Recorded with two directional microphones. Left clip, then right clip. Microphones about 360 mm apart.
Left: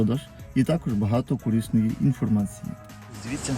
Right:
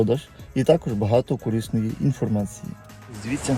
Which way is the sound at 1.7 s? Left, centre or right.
Right.